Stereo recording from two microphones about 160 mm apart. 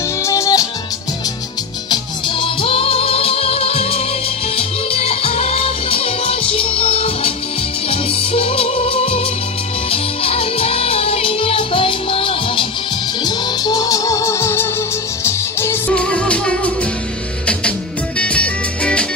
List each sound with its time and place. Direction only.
0.2 s music: 20° left (ahead or behind)
1.9 s music: 30° left (ahead or behind)
13.2 s music: 25° left (ahead or behind); by 19.0 s 5° left (ahead or behind)